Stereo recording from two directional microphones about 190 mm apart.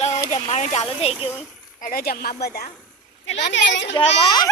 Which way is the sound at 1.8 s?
50° left (ahead or behind).